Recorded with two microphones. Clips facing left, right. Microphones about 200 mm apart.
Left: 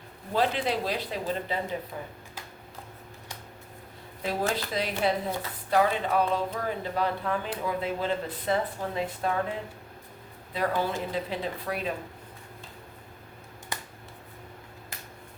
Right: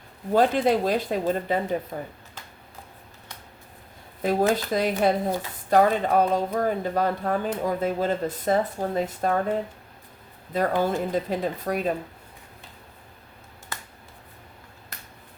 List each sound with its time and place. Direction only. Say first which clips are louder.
0.3 s speech: right 7 dB; 45° right (ahead or behind)
4.2 s speech: right 7 dB; 45° right (ahead or behind)
13.7 s a sound: left 1 dB; 15° left (ahead or behind)